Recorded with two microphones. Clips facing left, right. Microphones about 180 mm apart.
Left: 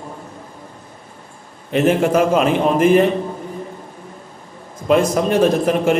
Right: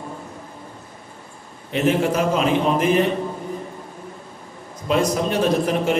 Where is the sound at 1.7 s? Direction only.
55° left (ahead or behind).